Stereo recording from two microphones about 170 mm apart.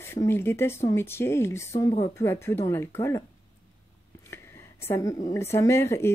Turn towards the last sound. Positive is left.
turn(degrees=15)  # may be behind; listen again after turning